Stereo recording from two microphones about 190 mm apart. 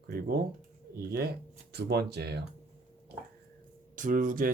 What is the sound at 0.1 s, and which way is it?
Speech, 55° right (ahead or behind).